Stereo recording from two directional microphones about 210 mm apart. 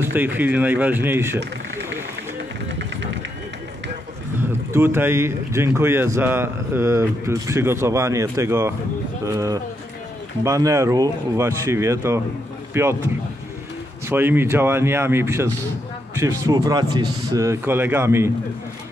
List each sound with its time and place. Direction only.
0.0 s speech: 10° right (ahead or behind)
2.8 s run: 60° right (ahead or behind)
4.4 s speech: 10° right (ahead or behind)
14.0 s speech: 10° right (ahead or behind)